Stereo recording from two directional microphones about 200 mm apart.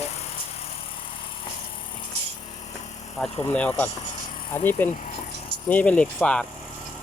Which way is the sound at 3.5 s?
5° left (ahead or behind).